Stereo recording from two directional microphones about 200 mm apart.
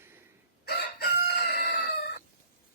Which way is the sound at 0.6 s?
55° left (ahead or behind).